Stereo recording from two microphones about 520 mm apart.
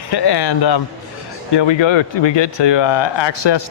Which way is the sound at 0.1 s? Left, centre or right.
Left.